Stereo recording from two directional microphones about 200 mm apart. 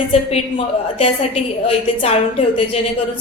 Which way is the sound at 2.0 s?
30° left (ahead or behind).